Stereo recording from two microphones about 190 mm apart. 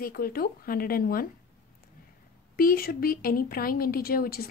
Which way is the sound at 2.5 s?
50° left (ahead or behind).